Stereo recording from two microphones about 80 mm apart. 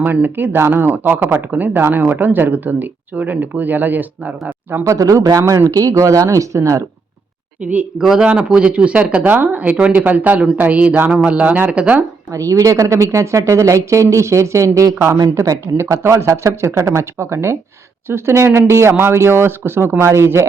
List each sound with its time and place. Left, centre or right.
0.0 s speech: right
4.8 s speech: right
7.7 s speech: centre
12.3 s speech: right